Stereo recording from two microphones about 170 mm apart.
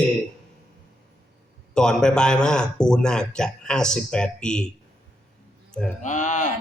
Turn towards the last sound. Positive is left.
turn(degrees=45)  # may be behind; listen again after turning